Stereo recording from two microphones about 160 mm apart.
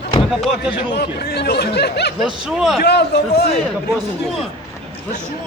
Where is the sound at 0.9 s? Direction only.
90° left.